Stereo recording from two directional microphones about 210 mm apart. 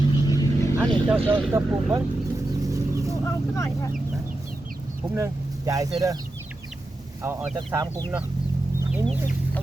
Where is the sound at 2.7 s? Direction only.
15° right (ahead or behind).